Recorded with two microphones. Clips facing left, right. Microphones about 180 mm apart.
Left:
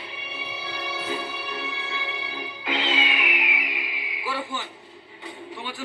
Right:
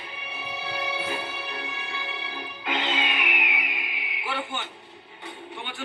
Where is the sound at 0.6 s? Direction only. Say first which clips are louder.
Right 3 dB; 55° right (ahead or behind).